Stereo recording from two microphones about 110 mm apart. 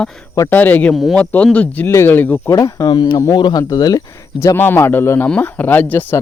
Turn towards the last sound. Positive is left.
turn(degrees=15)  # may be behind; listen again after turning